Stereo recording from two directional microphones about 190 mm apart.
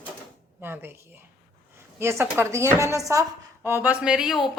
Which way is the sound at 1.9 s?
15° right (ahead or behind).